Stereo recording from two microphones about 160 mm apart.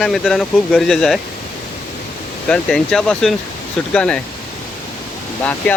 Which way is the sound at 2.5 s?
5° left (ahead or behind).